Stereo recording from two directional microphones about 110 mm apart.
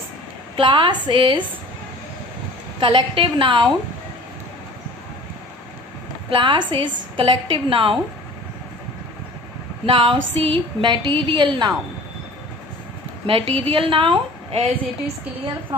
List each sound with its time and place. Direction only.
0.6 s a woman's voice: 50° right (ahead or behind)
2.8 s a woman's voice: 45° right (ahead or behind)
6.3 s a woman's voice: 45° right (ahead or behind)
9.8 s a woman's voice: 50° right (ahead or behind)
13.3 s a woman's voice: 55° right (ahead or behind)